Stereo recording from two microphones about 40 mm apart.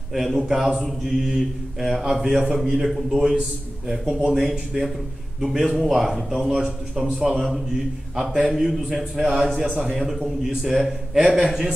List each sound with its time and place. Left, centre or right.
0.1 s speech: centre
7.1 s a man's voice: centre
7.3 s speech: centre
8.2 s speech: centre